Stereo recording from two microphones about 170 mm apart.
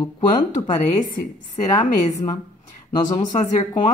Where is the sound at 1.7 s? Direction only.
20° left (ahead or behind).